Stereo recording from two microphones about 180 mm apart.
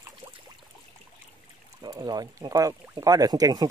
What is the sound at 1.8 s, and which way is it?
Speech, 20° right (ahead or behind).